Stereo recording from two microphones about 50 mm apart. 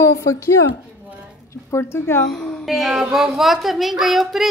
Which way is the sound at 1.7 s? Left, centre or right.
Left.